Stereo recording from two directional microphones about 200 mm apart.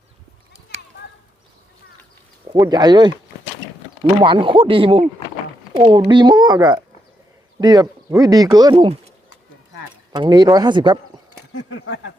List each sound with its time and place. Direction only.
2.5 s speech: 20° right (ahead or behind)
4.2 s speech: 25° right (ahead or behind)
10.1 s speech: 20° right (ahead or behind)
11.5 s a sound: 85° left